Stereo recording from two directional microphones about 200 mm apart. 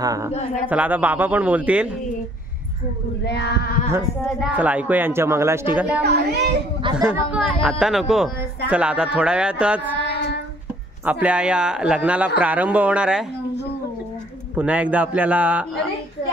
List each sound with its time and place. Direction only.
0.0 s speech: 15° right (ahead or behind)
3.3 s a sound: 55° left (ahead or behind)
4.6 s speech: 5° right (ahead or behind)
6.0 s a child's voice: 55° right (ahead or behind)
7.0 s a man's voice: 5° right (ahead or behind)
10.0 s child singing: 55° left (ahead or behind)
11.1 s a man's voice: 5° right (ahead or behind)
14.5 s speech: 5° right (ahead or behind)